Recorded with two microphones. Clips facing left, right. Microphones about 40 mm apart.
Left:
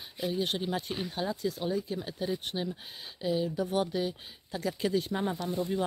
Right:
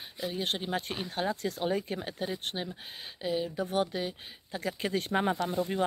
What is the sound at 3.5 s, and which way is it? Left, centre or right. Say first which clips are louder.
Speech: left 1 dB; right.